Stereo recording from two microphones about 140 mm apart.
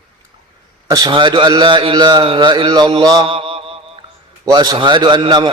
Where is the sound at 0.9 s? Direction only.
30° right (ahead or behind).